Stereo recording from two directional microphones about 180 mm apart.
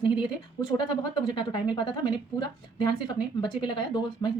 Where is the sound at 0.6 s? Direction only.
25° left (ahead or behind).